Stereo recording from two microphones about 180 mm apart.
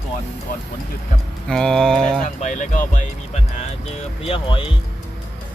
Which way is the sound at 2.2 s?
45° left (ahead or behind).